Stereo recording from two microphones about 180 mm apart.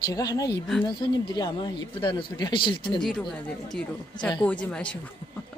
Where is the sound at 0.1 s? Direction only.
20° left (ahead or behind).